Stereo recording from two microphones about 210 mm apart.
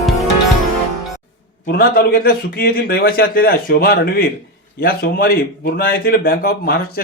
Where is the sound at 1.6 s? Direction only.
45° left (ahead or behind).